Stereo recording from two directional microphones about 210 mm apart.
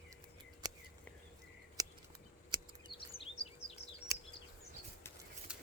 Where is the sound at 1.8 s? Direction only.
15° right (ahead or behind).